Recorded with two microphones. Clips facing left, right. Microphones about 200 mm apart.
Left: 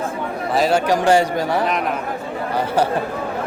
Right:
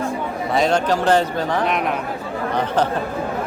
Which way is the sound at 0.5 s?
5° left (ahead or behind).